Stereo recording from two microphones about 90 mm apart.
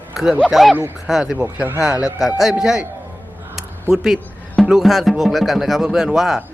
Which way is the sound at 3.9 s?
5° right (ahead or behind).